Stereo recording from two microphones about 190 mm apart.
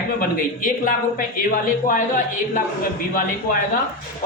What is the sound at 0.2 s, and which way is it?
A woman's voice, 45° left (ahead or behind).